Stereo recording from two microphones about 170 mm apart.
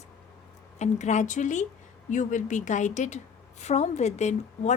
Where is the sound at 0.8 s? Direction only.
45° left (ahead or behind).